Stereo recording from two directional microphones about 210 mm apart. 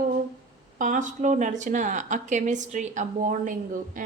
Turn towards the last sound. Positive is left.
turn(degrees=-40)  # may be behind; listen again after turning